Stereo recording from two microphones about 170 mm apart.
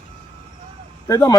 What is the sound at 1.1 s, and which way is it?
Speech, 20° left (ahead or behind).